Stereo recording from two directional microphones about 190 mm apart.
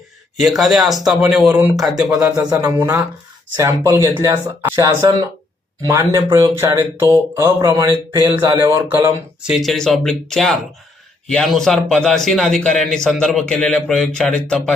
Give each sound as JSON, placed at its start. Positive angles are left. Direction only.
{"t": 0.3, "sound": "speech", "side_deg": 0}
{"t": 2.6, "sound": "speech", "side_deg": -15}
{"t": 9.5, "sound": "speech", "side_deg": 0}